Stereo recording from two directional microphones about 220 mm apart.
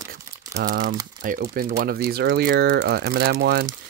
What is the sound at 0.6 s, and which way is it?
Speech, 40° right (ahead or behind).